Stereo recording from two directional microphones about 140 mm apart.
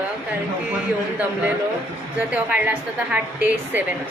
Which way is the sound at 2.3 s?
10° right (ahead or behind).